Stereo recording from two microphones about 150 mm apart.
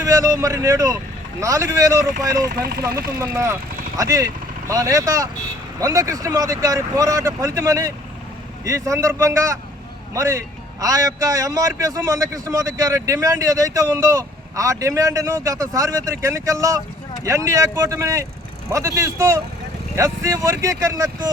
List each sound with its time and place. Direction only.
0.0 s a man's voice: 20° right (ahead or behind)
3.2 s a man's voice: 20° right (ahead or behind)